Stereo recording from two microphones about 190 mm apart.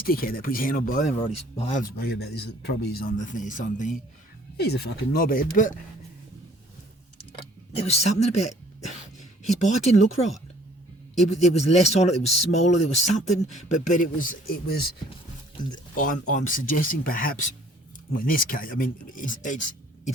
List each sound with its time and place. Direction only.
0.0 s speech: 50° left (ahead or behind)
1.2 s speech: 30° left (ahead or behind)
1.7 s speech: 50° left (ahead or behind)
4.5 s speech: 60° left (ahead or behind)
7.8 s speech: 35° left (ahead or behind); by 14.8 s 55° left (ahead or behind)
16.0 s speech: 45° left (ahead or behind)